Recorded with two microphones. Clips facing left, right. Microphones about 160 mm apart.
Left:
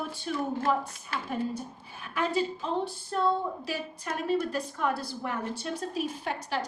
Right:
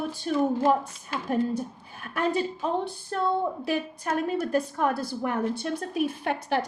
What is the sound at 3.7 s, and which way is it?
A woman's voice, 55° right (ahead or behind).